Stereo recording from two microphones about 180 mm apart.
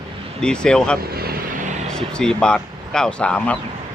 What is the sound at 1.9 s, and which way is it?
Speech, 5° left (ahead or behind).